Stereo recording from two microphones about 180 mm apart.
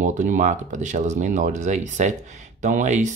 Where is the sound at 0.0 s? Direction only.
45° right (ahead or behind).